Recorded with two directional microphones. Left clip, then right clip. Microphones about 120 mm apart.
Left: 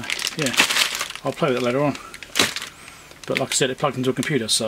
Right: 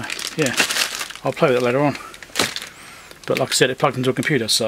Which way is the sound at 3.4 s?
30° right (ahead or behind).